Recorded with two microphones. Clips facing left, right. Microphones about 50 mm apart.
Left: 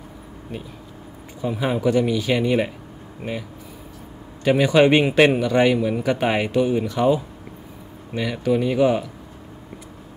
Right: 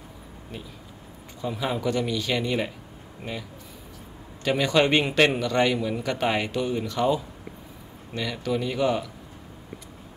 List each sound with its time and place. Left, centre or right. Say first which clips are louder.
1.4 s a man's voice: left 6 dB; centre
4.5 s a man's voice: left 6 dB; centre